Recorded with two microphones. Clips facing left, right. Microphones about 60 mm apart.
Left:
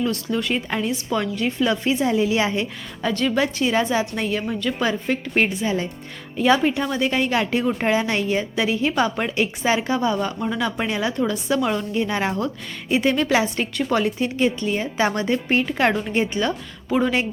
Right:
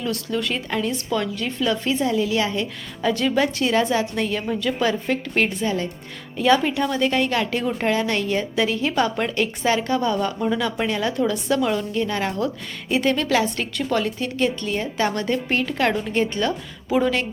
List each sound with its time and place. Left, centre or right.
0.0 s a woman's voice: centre; by 2.6 s left
3.0 s a woman's voice: centre
16.5 s a woman's voice: centre
17.1 s a woman's voice: centre